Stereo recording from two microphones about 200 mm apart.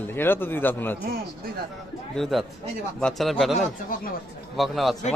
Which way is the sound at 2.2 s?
Centre (ahead or behind).